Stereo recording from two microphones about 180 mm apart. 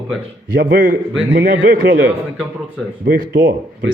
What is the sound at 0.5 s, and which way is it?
A man's voice, 55° right (ahead or behind).